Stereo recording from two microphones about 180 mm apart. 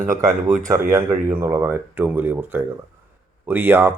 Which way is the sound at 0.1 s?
20° right (ahead or behind).